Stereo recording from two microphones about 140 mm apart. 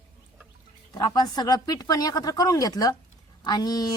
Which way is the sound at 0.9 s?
30° left (ahead or behind).